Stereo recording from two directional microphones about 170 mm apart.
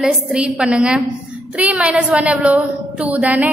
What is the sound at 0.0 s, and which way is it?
A woman's voice, 5° right (ahead or behind).